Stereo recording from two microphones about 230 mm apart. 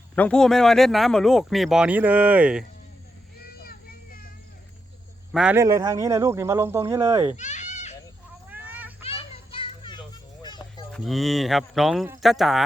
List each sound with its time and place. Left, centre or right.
0.2 s speech: centre
3.6 s vehicle: left
5.3 s speech: centre
7.3 s goat: left
8.4 s a sound: centre
9.0 s children playing: left
10.4 s a sound: centre
10.9 s speech: centre